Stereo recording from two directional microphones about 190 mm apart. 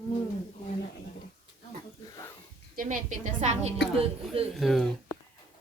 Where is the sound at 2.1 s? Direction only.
15° left (ahead or behind).